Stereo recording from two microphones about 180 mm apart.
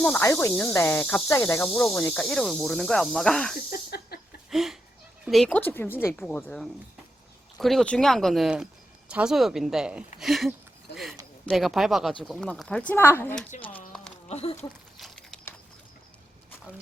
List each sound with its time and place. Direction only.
0.0 s speech: 10° left (ahead or behind)
1.9 s snake: 5° left (ahead or behind)
3.7 s snake: 55° left (ahead or behind)
4.5 s speech: centre (ahead or behind)
7.6 s snake: centre (ahead or behind)
10.9 s a sound: 70° left (ahead or behind)
11.4 s snake: centre (ahead or behind)
13.7 s a sound: 5° left (ahead or behind)
14.3 s speech: 35° left (ahead or behind)
14.9 s a sound: centre (ahead or behind)